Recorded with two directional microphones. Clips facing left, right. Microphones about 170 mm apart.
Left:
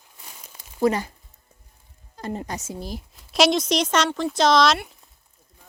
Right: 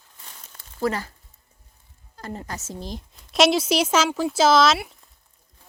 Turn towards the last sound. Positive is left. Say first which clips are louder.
# right 1 dB
turn(degrees=0)  # may be behind; listen again after turning